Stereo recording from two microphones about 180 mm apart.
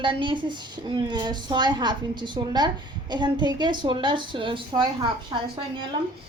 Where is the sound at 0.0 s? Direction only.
25° right (ahead or behind).